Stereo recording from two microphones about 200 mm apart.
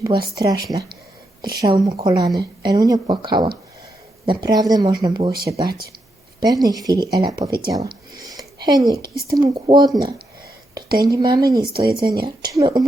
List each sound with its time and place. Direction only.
0.3 s speech: 20° right (ahead or behind)
9.0 s speech: 50° right (ahead or behind)
9.3 s speech: 20° right (ahead or behind)
11.0 s speech: 20° right (ahead or behind)
11.9 s speech: 50° right (ahead or behind)
12.4 s speech: 20° right (ahead or behind)